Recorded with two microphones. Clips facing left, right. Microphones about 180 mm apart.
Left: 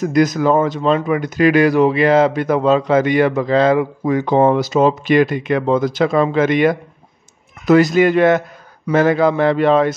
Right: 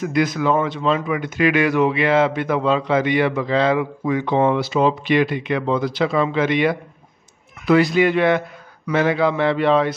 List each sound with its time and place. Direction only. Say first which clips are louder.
0.0 s a man's voice: left 5 dB; 40° left (ahead or behind)